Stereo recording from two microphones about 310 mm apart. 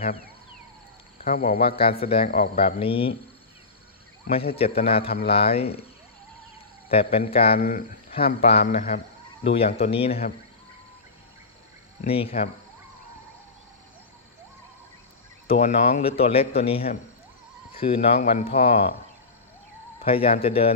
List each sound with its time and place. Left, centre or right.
1.2 s a man's voice: left
4.8 s a man's voice: centre
6.9 s a man's voice: centre
12.0 s a man's voice: centre
15.4 s a man's voice: left
20.0 s a man's voice: centre